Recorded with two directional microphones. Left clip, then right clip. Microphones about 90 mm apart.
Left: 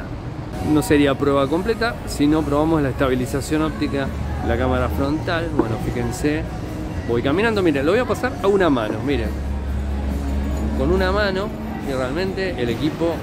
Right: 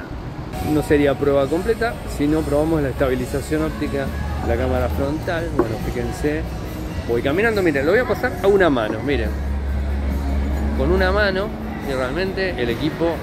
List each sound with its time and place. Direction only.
0.7 s speech: 30° left (ahead or behind)
8.4 s speech: 15° left (ahead or behind)
10.9 s speech: 10° left (ahead or behind)